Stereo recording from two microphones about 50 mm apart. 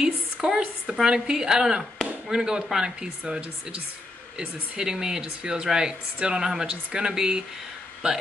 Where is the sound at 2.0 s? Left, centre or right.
Centre.